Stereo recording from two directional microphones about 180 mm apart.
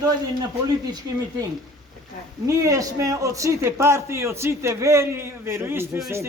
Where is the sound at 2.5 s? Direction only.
15° right (ahead or behind).